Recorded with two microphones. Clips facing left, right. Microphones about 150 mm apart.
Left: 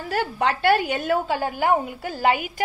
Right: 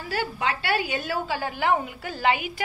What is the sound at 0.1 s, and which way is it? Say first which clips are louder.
A woman's voice: left 4 dB; 55° left (ahead or behind).